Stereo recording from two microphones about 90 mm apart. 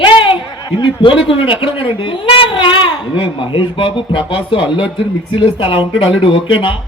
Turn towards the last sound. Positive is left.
turn(degrees=75)  # may be behind; listen again after turning